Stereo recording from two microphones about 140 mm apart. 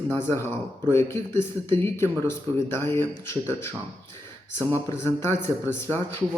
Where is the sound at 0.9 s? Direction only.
20° left (ahead or behind).